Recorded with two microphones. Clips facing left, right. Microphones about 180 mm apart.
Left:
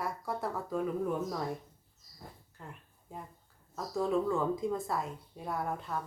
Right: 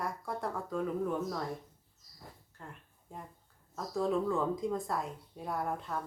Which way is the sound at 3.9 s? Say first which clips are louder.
Left 1 dB; centre (ahead or behind).